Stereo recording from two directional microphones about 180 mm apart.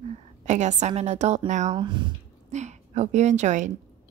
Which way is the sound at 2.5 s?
40° right (ahead or behind).